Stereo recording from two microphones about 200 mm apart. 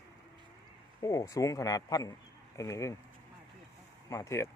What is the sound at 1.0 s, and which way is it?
Speech, 15° left (ahead or behind).